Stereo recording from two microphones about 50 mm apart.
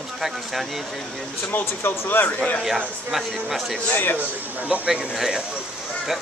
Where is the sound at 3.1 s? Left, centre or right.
Centre.